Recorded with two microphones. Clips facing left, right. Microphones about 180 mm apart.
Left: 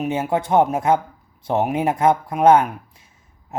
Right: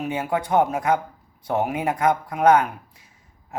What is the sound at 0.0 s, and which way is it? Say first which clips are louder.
Speech: left 3 dB; 25° left (ahead or behind).